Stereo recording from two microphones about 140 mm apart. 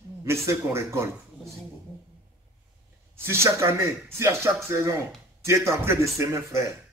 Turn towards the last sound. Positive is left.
turn(degrees=-20)  # may be behind; listen again after turning